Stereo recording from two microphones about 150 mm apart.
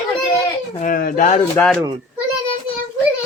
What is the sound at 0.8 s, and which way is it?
Speech, 65° left (ahead or behind).